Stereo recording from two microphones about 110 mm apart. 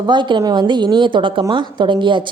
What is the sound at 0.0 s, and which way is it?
A woman's voice, 45° right (ahead or behind).